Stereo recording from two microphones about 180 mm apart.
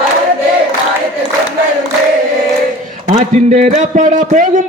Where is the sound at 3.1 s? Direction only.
40° right (ahead or behind).